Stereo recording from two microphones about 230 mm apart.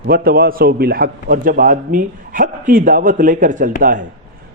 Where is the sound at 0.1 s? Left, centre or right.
Right.